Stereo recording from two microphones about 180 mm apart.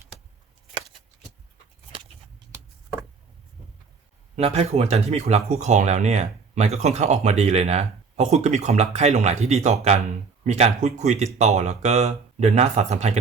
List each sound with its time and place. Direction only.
4.4 s speech: 35° right (ahead or behind)